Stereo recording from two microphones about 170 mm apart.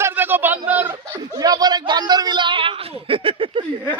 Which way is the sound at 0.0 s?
10° right (ahead or behind).